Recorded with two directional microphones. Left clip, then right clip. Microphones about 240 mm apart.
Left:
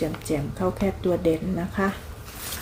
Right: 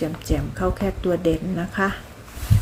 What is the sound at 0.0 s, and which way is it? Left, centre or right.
Speech, centre.